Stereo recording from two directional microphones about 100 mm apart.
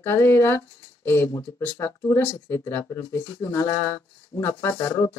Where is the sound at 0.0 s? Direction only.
25° left (ahead or behind).